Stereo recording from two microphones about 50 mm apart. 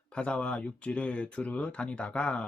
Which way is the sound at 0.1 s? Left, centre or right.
Left.